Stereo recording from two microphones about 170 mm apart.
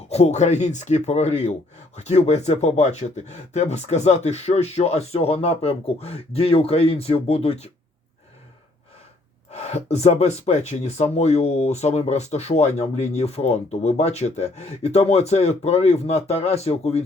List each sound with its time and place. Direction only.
0.1 s speech: 40° left (ahead or behind)
9.5 s speech: 40° left (ahead or behind)